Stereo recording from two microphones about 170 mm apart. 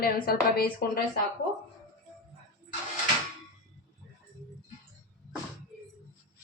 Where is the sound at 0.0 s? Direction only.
65° left (ahead or behind).